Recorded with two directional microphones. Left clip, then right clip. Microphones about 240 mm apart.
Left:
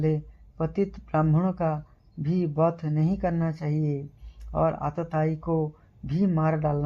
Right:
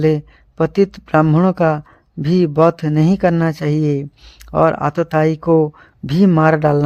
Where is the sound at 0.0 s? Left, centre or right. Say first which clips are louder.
Right 13 dB; right.